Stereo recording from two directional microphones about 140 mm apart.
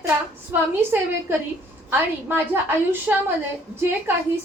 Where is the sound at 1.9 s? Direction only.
15° right (ahead or behind).